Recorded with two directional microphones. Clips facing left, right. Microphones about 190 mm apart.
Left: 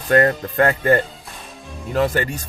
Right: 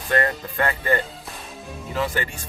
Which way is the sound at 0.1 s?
45° left (ahead or behind).